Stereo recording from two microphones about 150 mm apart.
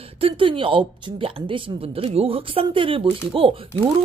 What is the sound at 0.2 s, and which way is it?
Speech, 35° right (ahead or behind).